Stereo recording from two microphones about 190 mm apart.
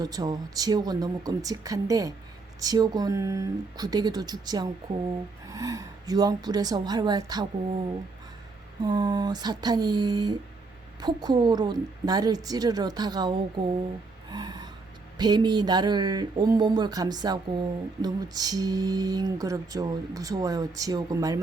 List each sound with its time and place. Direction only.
0.0 s speech: 20° right (ahead or behind)
14.3 s gasp: 20° right (ahead or behind)
15.2 s speech: 20° right (ahead or behind)